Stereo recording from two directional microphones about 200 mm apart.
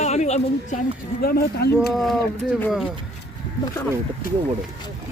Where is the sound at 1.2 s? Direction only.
50° left (ahead or behind).